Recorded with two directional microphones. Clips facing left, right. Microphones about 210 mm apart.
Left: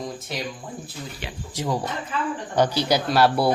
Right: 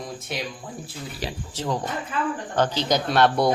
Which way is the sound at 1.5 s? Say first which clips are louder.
Left 2 dB; 10° left (ahead or behind).